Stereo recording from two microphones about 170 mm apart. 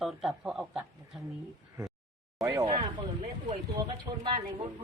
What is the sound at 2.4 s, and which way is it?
Speech, 20° right (ahead or behind).